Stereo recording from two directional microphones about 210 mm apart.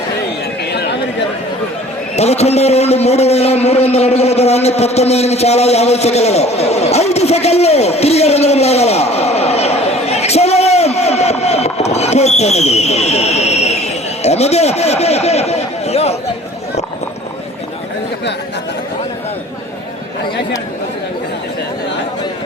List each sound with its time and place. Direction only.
0.7 s chatter: 50° left (ahead or behind)
2.1 s a man's voice: 30° left (ahead or behind)